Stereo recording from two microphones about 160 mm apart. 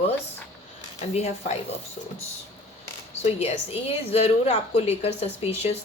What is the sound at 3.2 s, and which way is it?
A woman's voice, 40° left (ahead or behind).